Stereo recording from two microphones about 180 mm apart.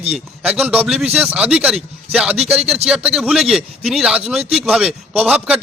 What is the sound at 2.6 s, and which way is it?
Speech, 35° right (ahead or behind).